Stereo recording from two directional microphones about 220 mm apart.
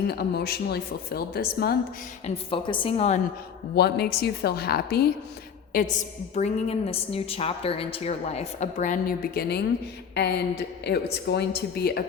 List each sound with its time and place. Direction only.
0.1 s a woman's voice: 45° left (ahead or behind)
2.2 s a woman's voice: 25° left (ahead or behind)
3.8 s a woman's voice: 45° left (ahead or behind)
6.3 s a woman's voice: 30° left (ahead or behind); by 12.0 s 45° left (ahead or behind)